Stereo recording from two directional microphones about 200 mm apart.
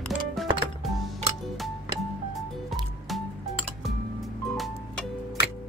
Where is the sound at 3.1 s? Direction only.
Centre (ahead or behind).